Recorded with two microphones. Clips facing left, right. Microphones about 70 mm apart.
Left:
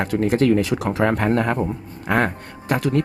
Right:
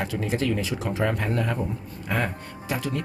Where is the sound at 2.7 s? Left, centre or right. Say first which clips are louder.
Left 9 dB; left.